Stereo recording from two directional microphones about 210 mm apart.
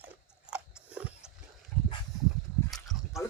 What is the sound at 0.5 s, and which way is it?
Biting, 5° right (ahead or behind).